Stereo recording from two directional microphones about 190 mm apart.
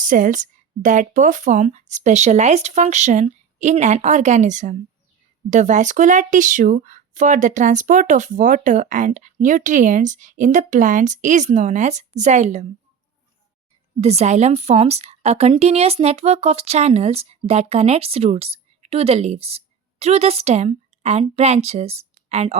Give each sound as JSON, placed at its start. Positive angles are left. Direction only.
{"t": 0.0, "sound": "a woman's voice", "side_deg": -45}
{"t": 14.0, "sound": "a woman's voice", "side_deg": -35}